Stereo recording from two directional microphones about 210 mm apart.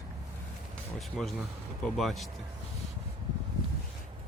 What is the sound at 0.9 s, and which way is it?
Speech, centre (ahead or behind).